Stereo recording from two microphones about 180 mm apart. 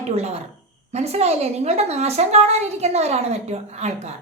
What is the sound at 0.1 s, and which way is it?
A woman's voice, 35° right (ahead or behind).